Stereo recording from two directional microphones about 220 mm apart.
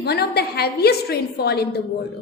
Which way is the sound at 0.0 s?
45° left (ahead or behind).